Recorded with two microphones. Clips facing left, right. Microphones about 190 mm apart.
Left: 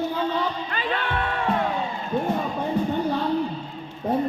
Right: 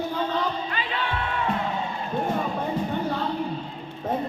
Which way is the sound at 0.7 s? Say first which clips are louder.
Left 2 dB; 45° left (ahead or behind).